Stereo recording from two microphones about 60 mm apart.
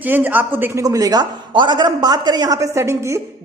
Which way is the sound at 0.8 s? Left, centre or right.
Right.